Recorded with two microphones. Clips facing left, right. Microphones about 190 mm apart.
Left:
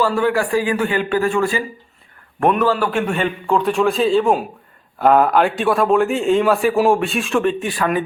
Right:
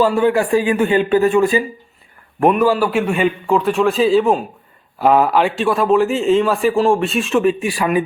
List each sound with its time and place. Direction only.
0.0 s a man's voice: 20° right (ahead or behind)
2.5 s a man's voice: 10° right (ahead or behind)